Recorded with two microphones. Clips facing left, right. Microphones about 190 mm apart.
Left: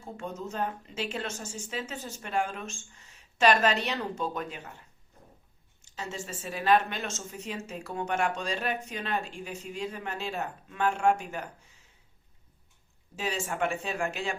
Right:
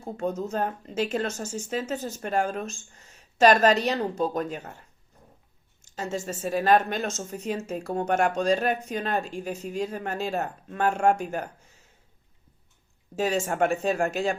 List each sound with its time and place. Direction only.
0.0 s speech: 40° right (ahead or behind)
5.8 s speech: 45° right (ahead or behind)
13.1 s speech: 45° right (ahead or behind)